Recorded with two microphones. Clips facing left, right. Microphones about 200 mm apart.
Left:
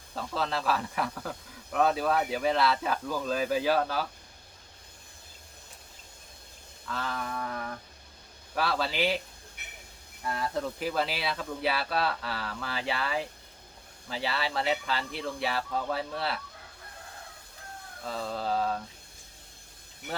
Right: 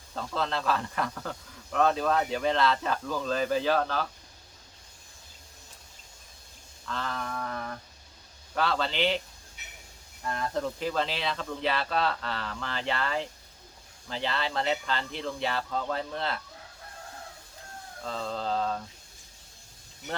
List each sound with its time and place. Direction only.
0.1 s speech: 5° left (ahead or behind)
6.8 s a sound: 5° left (ahead or behind)
8.5 s speech: 10° left (ahead or behind)
9.6 s train: 55° left (ahead or behind)
10.2 s speech: 5° left (ahead or behind)
18.0 s speech: 5° left (ahead or behind)
20.0 s speech: 55° left (ahead or behind)